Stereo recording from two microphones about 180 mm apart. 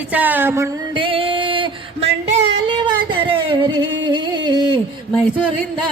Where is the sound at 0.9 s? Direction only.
30° right (ahead or behind).